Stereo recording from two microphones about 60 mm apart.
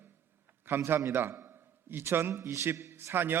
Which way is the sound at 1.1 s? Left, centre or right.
Right.